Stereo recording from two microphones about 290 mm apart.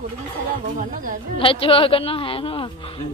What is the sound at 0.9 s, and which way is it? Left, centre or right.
Speech, right.